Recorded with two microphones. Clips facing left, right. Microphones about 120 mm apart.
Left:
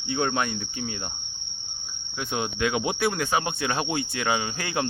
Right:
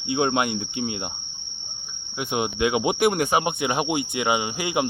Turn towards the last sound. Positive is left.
turn(degrees=-15)  # may be behind; listen again after turning